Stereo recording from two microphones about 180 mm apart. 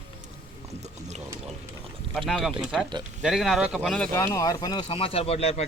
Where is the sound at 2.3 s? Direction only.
Centre (ahead or behind); by 5.6 s 35° left (ahead or behind).